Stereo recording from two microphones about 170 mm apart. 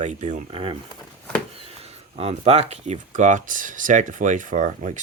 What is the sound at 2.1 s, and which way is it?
Speech, 40° right (ahead or behind).